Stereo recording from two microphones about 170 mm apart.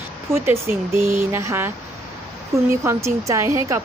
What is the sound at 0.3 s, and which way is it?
A woman's voice, 15° right (ahead or behind).